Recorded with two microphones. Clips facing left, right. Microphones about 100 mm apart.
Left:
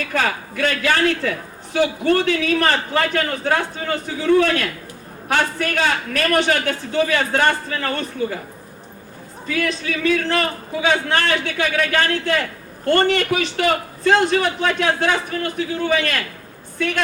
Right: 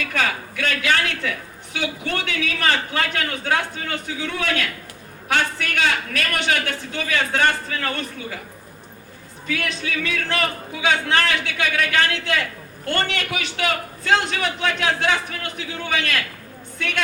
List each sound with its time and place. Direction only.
0.0 s a man's voice: 35° left (ahead or behind)
9.5 s a man's voice: 35° left (ahead or behind)